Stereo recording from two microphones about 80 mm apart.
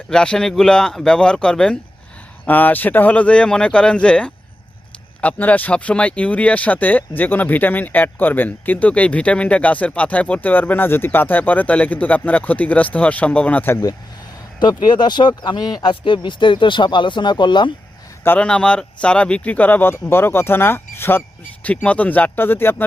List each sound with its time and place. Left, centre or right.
0.1 s speech: centre
2.5 s speech: left
14.6 s speech: left
18.3 s speech: centre; by 22.7 s left